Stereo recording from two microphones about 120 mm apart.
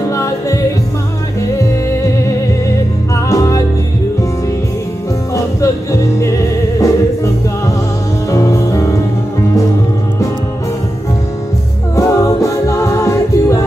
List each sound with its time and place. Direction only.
0.0 s music: 25° left (ahead or behind)
3.3 s music: 25° left (ahead or behind)
5.3 s music: 25° left (ahead or behind)
11.9 s music: 25° left (ahead or behind)